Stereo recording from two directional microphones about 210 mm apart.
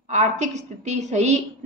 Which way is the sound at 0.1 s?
35° right (ahead or behind).